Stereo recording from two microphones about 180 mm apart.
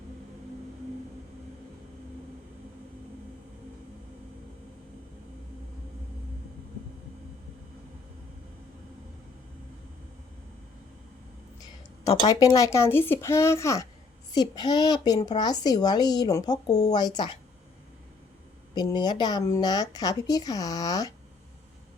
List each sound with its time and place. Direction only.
12.2 s speech: 20° left (ahead or behind)
18.7 s speech: 25° left (ahead or behind)